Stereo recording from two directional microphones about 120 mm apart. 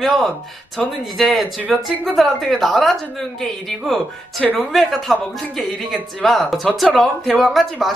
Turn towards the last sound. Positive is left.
turn(degrees=0)  # may be behind; listen again after turning